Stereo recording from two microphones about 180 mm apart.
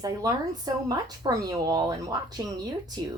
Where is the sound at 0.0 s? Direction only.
20° right (ahead or behind).